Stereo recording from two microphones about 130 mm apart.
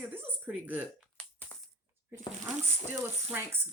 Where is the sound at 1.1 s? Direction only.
10° left (ahead or behind).